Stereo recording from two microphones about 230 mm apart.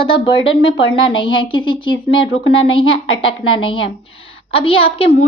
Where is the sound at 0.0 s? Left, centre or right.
Left.